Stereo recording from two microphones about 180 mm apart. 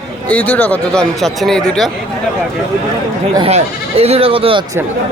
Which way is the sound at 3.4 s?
35° right (ahead or behind).